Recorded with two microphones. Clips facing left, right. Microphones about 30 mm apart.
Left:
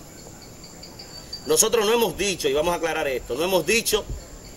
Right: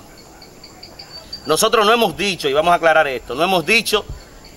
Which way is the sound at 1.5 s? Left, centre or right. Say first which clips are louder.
Right 6 dB; right.